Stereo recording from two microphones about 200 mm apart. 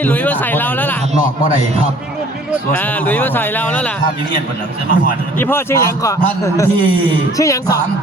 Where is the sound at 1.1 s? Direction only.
30° right (ahead or behind).